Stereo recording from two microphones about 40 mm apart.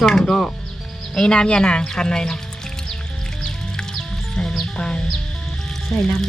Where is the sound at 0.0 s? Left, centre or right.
Centre.